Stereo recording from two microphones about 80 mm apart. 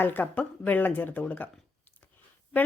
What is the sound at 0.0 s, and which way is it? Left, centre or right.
Speech, left.